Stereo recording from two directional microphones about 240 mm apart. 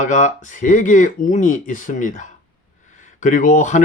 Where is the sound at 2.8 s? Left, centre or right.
Left.